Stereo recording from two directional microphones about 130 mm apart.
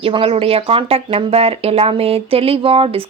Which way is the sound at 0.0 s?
45° right (ahead or behind).